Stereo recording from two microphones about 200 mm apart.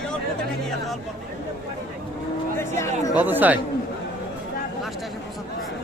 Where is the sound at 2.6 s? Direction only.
15° left (ahead or behind).